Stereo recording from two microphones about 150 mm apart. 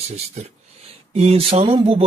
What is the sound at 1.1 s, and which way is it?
Speech, 45° right (ahead or behind).